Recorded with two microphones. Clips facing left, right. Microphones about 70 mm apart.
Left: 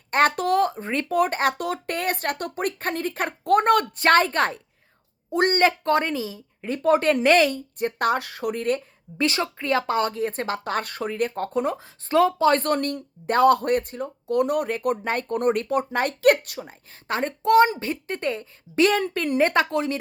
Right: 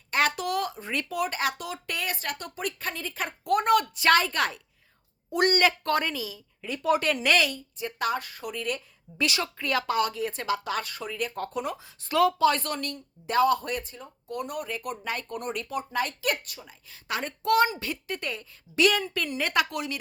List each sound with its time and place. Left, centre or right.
0.1 s speech: left
7.8 s speech: left
12.5 s speech: left
16.9 s speech: left